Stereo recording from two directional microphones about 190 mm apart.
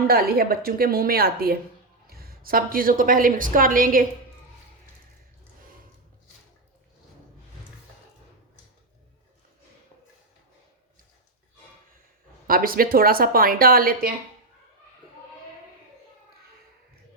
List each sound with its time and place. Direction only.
0.1 s a woman's voice: 55° right (ahead or behind)
12.5 s a woman's voice: 50° right (ahead or behind)